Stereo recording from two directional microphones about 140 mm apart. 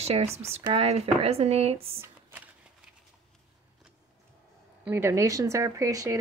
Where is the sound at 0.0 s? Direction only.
50° right (ahead or behind).